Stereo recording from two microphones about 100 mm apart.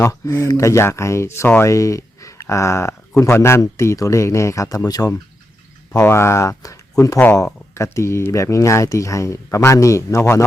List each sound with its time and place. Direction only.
0.0 s speech: 35° left (ahead or behind)
6.0 s speech: 25° left (ahead or behind)